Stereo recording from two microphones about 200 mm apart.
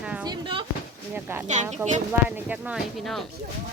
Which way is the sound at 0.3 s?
25° right (ahead or behind).